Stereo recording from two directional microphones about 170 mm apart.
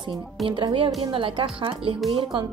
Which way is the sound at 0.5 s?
30° right (ahead or behind).